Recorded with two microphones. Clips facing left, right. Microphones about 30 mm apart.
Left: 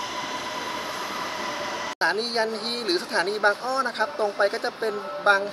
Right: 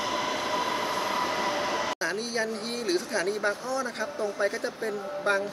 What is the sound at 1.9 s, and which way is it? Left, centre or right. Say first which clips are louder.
Speech: left 6 dB; left.